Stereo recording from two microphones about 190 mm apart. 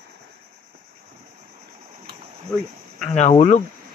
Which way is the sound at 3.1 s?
35° left (ahead or behind).